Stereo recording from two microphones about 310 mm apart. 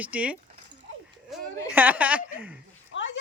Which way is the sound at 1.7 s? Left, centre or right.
Centre.